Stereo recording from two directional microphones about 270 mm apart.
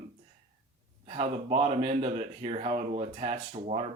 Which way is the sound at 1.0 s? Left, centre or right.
Right.